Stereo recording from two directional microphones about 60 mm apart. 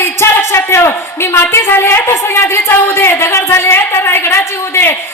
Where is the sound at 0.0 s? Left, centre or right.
Left.